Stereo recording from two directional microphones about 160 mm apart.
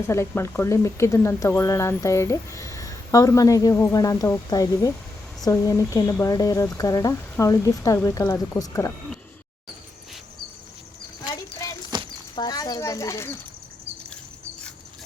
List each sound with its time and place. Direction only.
0.1 s speech: 15° left (ahead or behind)
11.3 s a sound: 20° left (ahead or behind)
12.4 s a child's voice: 25° left (ahead or behind)